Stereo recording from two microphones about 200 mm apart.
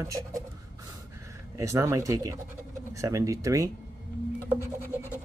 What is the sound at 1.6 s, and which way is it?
Speech, 15° right (ahead or behind).